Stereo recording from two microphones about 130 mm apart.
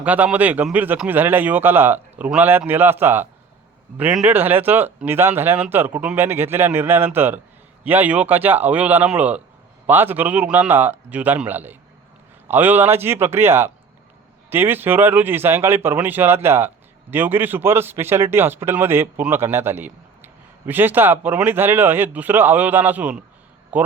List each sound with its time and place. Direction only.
0.0 s a man's voice: 10° right (ahead or behind)